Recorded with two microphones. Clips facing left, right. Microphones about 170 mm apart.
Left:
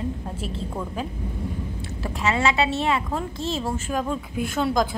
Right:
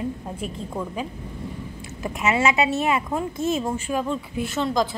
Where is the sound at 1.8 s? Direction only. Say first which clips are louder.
Right 2 dB; 20° right (ahead or behind).